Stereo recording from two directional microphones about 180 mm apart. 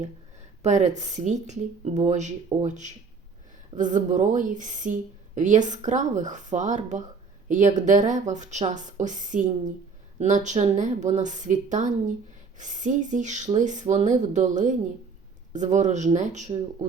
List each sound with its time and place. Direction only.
0.6 s a woman's voice: 40° right (ahead or behind)